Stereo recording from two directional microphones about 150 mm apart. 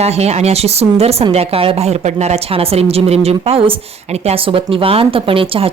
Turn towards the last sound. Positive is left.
turn(degrees=-40)  # may be behind; listen again after turning